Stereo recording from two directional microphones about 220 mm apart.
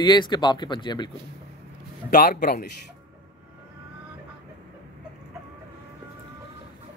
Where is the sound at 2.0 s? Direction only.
40° left (ahead or behind).